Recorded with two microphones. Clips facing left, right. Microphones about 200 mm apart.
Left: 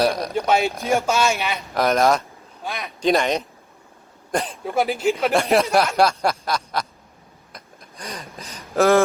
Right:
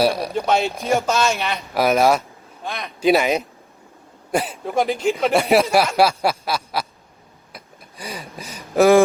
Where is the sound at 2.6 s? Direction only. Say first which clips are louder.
Right 1 dB; 5° left (ahead or behind).